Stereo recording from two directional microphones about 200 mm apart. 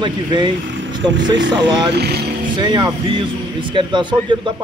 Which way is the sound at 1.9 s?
55° right (ahead or behind).